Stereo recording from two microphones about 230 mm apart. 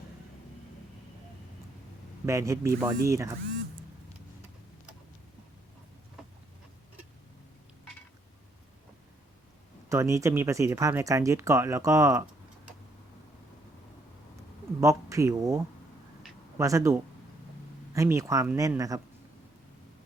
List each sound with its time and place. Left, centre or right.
2.2 s speech: centre
9.9 s speech: centre
14.8 s speech: centre